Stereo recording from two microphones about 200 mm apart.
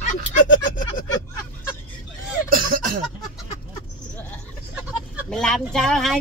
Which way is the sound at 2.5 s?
45° right (ahead or behind).